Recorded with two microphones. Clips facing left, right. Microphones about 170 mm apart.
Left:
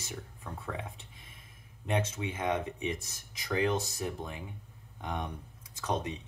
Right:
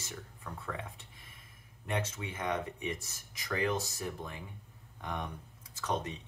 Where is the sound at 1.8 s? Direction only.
20° left (ahead or behind).